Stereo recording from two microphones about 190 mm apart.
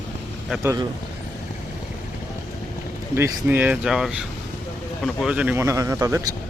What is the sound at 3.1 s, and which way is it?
Speech, 10° right (ahead or behind).